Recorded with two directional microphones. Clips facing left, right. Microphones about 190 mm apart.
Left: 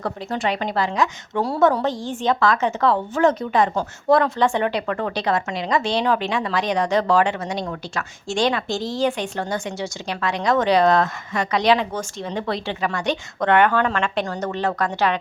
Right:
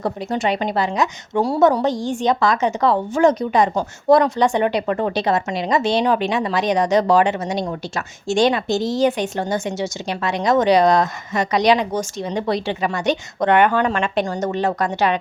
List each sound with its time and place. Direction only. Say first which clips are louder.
0.0 s a woman's voice: right 3 dB; 20° right (ahead or behind)